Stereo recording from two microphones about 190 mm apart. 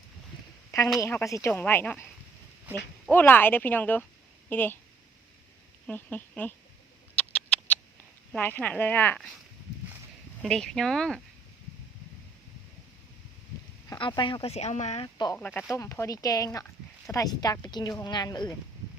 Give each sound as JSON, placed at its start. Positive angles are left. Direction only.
{"t": 0.9, "sound": "speech", "side_deg": 15}
{"t": 3.1, "sound": "a woman's voice", "side_deg": 10}
{"t": 5.8, "sound": "speech", "side_deg": 10}
{"t": 7.2, "sound": "rodents", "side_deg": 5}
{"t": 8.3, "sound": "speech", "side_deg": 10}
{"t": 10.4, "sound": "speech", "side_deg": 0}
{"t": 13.9, "sound": "speech", "side_deg": 20}
{"t": 15.0, "sound": "speech", "side_deg": 20}
{"t": 15.4, "sound": "speech", "side_deg": 10}